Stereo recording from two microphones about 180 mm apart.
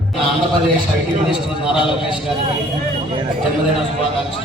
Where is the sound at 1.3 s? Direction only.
Centre (ahead or behind).